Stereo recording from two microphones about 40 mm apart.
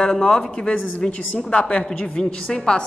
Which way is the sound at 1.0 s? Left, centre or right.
Left.